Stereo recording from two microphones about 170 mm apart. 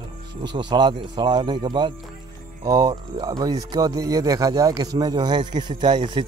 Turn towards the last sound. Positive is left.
turn(degrees=-25)  # may be behind; listen again after turning